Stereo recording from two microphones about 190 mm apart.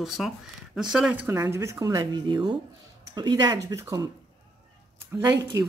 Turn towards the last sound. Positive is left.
turn(degrees=-20)  # may be behind; listen again after turning